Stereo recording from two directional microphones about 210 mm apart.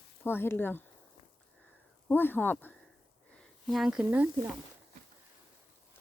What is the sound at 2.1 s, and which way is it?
Speech, 10° left (ahead or behind).